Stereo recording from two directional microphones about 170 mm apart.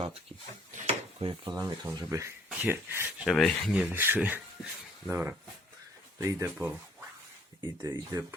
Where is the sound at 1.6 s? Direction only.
15° right (ahead or behind).